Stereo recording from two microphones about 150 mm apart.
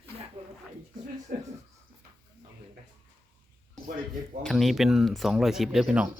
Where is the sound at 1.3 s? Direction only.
65° right (ahead or behind).